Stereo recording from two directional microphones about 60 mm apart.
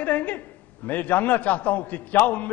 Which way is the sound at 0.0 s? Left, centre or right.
Left.